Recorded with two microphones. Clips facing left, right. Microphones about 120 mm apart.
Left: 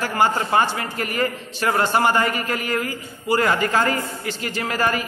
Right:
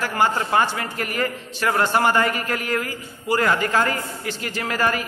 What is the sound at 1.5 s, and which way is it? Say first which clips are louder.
A man's voice: even; 15° left (ahead or behind).